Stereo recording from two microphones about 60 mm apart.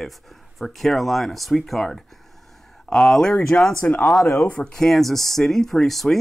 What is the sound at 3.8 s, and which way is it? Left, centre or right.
Speech, left.